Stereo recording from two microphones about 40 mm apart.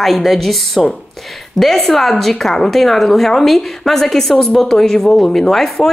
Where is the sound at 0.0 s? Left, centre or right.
Centre.